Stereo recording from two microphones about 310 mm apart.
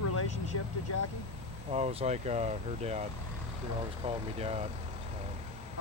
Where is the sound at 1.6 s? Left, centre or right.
Centre.